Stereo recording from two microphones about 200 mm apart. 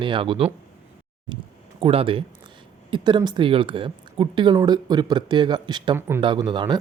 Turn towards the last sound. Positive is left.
turn(degrees=-20)  # may be behind; listen again after turning